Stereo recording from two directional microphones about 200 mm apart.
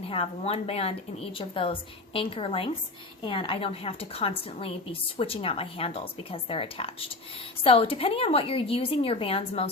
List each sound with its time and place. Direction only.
0.1 s a woman's voice: 30° left (ahead or behind)